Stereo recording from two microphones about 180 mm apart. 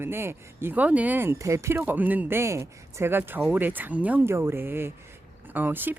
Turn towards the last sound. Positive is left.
turn(degrees=-10)  # may be behind; listen again after turning